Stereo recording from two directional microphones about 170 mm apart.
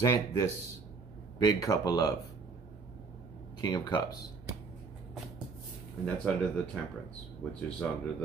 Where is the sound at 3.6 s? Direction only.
25° left (ahead or behind).